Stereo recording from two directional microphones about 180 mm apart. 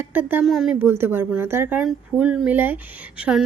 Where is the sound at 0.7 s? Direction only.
10° right (ahead or behind).